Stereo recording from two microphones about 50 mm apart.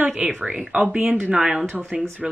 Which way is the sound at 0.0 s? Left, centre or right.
Right.